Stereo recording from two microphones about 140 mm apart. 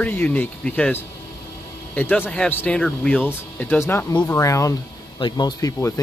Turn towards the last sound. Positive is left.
turn(degrees=25)  # may be behind; listen again after turning